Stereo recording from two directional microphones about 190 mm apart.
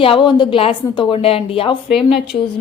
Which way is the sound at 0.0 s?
25° left (ahead or behind).